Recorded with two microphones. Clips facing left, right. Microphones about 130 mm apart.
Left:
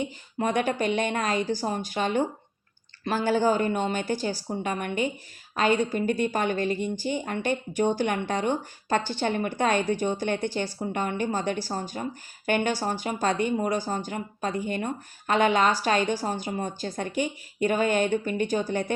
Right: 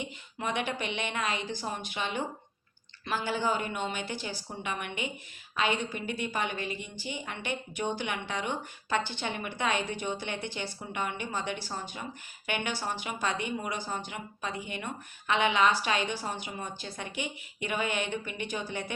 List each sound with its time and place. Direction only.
0.0 s speech: 45° left (ahead or behind)